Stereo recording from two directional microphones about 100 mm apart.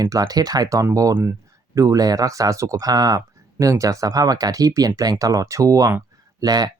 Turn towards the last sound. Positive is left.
turn(degrees=-40)  # may be behind; listen again after turning